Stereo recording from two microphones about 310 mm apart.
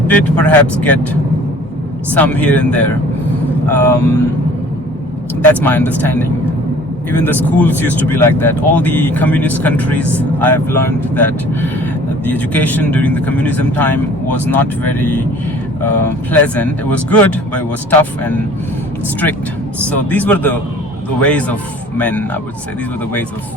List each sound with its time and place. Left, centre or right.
0.1 s speech: centre
2.1 s speech: centre
5.5 s speech: centre
7.3 s speech: centre
12.2 s speech: centre
20.1 s speech: centre